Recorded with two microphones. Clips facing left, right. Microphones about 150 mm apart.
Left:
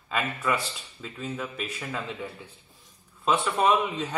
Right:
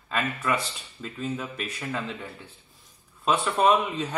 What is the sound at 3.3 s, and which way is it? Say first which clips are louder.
Speech: right 1 dB; centre (ahead or behind).